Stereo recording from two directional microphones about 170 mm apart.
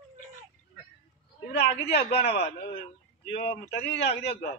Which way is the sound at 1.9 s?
70° left (ahead or behind).